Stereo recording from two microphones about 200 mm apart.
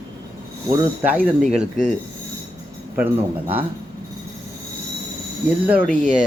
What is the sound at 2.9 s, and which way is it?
Speech, 10° right (ahead or behind).